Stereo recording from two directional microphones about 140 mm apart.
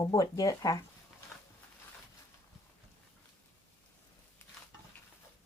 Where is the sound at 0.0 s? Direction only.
25° left (ahead or behind).